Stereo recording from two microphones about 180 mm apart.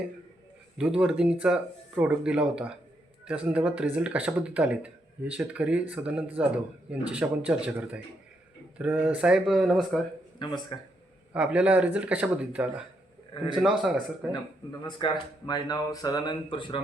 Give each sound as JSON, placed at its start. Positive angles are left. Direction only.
{"t": 0.8, "sound": "speech", "side_deg": -5}
{"t": 10.4, "sound": "speech", "side_deg": 25}
{"t": 11.3, "sound": "speech", "side_deg": -5}
{"t": 14.8, "sound": "speech", "side_deg": 25}